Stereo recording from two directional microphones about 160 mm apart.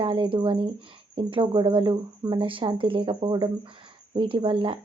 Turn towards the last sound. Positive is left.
turn(degrees=-35)  # may be behind; listen again after turning